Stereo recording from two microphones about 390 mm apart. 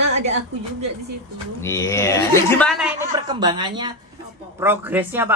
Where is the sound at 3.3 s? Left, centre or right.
Centre.